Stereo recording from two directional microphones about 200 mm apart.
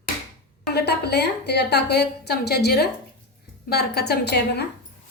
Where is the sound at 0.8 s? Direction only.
55° left (ahead or behind).